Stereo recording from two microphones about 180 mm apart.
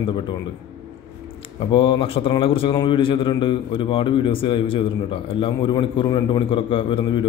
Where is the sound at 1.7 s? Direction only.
30° left (ahead or behind).